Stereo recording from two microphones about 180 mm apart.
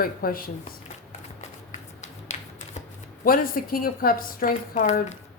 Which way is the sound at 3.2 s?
55° left (ahead or behind).